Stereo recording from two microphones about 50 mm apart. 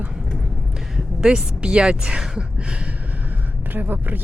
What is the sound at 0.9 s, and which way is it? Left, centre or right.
A woman's voice, centre.